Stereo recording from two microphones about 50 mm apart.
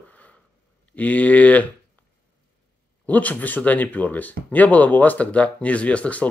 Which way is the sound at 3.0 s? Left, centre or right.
Left.